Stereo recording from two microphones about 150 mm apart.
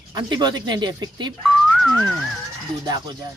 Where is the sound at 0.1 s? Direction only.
30° right (ahead or behind).